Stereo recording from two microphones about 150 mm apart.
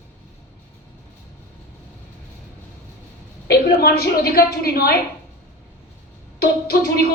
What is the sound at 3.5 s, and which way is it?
A woman's voice, 90° left.